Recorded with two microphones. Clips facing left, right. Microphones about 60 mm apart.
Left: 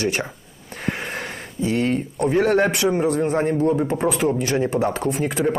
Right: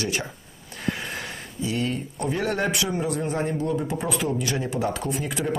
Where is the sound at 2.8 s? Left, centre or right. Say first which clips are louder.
Left 7 dB; left.